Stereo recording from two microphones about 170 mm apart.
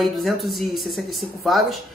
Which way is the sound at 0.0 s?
Centre (ahead or behind).